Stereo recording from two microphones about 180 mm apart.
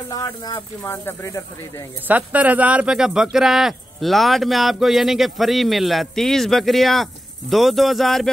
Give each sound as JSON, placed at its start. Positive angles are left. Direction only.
{"t": 0.1, "sound": "speech", "side_deg": 20}
{"t": 2.0, "sound": "speech", "side_deg": -10}